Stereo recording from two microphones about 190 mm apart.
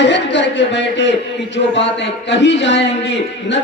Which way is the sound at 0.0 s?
70° left (ahead or behind).